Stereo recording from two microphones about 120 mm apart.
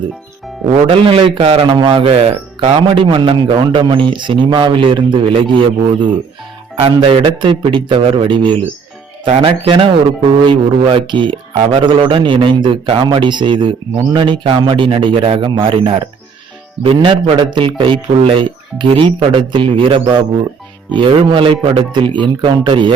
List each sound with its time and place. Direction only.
0.9 s speech: 50° right (ahead or behind)
1.6 s speech: 40° right (ahead or behind)